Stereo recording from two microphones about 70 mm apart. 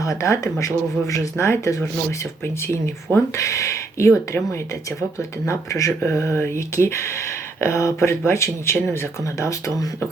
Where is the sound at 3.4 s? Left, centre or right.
Left.